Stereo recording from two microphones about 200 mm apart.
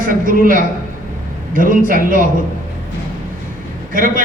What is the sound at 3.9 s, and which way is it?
Speech, 45° right (ahead or behind).